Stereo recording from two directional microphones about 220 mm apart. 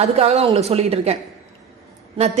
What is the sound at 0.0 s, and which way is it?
A woman's voice, 30° right (ahead or behind).